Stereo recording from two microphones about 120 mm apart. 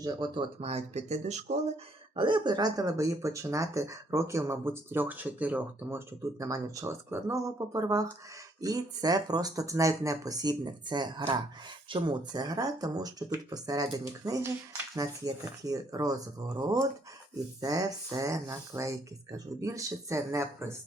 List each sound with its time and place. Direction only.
0.0 s speech: 35° right (ahead or behind)
0.6 s speech: 60° right (ahead or behind)
2.1 s speech: 40° right (ahead or behind); by 6.0 s 15° right (ahead or behind)
6.4 s speech: 30° right (ahead or behind)